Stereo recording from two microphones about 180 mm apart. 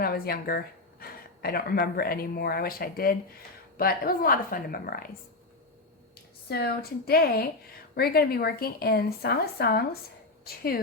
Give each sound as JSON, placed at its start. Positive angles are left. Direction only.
{"t": 0.0, "sound": "a woman's voice", "side_deg": 60}
{"t": 6.5, "sound": "speech", "side_deg": 60}